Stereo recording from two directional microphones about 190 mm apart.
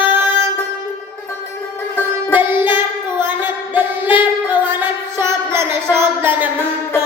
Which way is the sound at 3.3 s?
10° right (ahead or behind).